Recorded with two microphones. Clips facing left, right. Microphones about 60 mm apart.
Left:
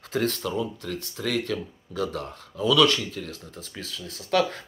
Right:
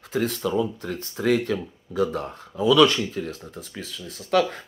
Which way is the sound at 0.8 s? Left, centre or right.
Right.